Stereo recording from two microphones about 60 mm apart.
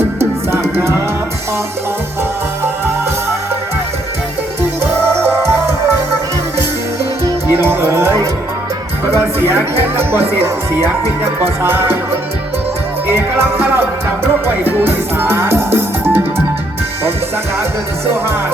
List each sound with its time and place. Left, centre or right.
0.2 s music: right
5.1 s music: right
7.5 s music: right
9.0 s speech: right
13.1 s music: right